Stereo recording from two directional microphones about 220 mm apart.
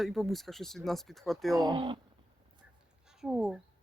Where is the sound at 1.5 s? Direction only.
20° right (ahead or behind).